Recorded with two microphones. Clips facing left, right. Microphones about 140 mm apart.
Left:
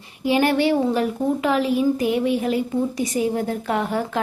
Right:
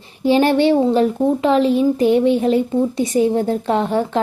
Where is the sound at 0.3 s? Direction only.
30° right (ahead or behind).